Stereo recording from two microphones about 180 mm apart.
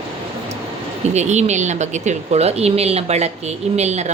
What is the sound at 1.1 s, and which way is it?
A woman's voice, 40° right (ahead or behind).